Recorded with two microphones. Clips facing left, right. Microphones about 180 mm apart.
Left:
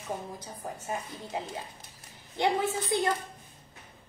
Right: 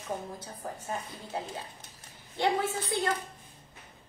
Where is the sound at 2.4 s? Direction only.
20° left (ahead or behind).